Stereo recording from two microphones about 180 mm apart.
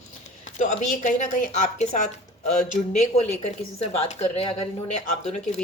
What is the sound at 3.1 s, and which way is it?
Speech, 35° left (ahead or behind).